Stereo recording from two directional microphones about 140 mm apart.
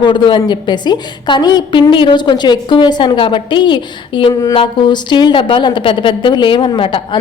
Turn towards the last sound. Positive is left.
turn(degrees=35)  # may be behind; listen again after turning